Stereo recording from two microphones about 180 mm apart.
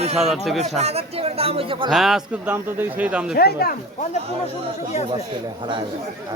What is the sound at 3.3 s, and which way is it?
Speech, 60° left (ahead or behind).